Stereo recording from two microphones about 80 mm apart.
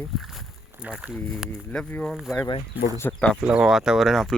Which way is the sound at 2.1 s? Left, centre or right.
Centre.